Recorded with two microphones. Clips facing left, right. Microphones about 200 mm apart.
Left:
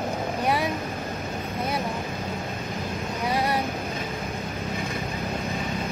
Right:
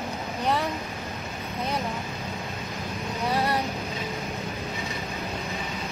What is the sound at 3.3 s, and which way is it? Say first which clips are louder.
Vehicle: even; 15° left (ahead or behind).